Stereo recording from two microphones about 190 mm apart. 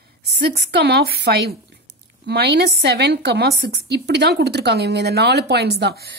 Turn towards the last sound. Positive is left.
turn(degrees=-60)  # may be behind; listen again after turning